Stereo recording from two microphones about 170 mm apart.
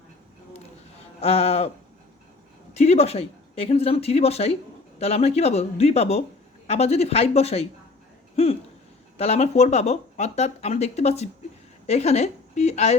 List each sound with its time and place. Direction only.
1.2 s speech: 35° left (ahead or behind)
2.7 s speech: 40° left (ahead or behind)
9.1 s speech: 35° left (ahead or behind)